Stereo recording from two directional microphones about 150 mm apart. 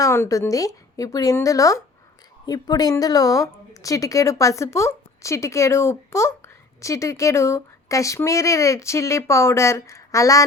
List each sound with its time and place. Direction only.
0.0 s a woman's voice: 20° left (ahead or behind)